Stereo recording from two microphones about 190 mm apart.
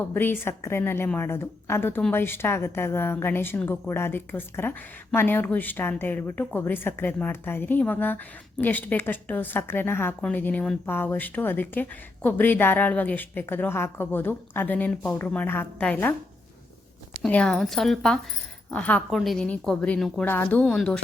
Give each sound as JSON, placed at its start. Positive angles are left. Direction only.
{"t": 0.1, "sound": "a woman's voice", "side_deg": 10}
{"t": 17.2, "sound": "a woman's voice", "side_deg": 5}